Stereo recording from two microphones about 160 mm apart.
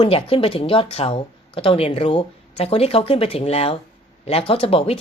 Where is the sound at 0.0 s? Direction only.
35° left (ahead or behind).